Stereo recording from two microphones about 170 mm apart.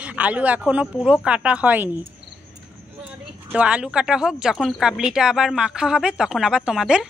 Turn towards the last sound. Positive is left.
turn(degrees=-5)  # may be behind; listen again after turning